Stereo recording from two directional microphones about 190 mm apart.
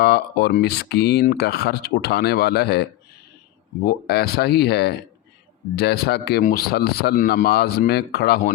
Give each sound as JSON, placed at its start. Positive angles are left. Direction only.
{"t": 0.0, "sound": "speech", "side_deg": 60}
{"t": 3.8, "sound": "speech", "side_deg": 55}